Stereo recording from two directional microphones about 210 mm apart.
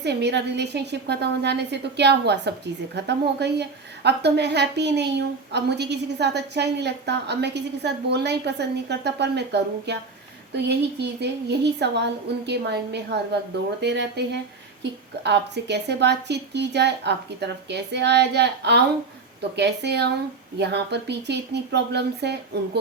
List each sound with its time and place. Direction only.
0.0 s a woman's voice: 55° right (ahead or behind)